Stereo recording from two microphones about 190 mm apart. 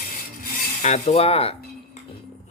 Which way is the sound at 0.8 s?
35° left (ahead or behind).